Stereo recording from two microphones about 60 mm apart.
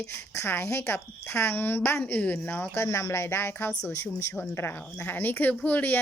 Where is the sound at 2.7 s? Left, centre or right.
Left.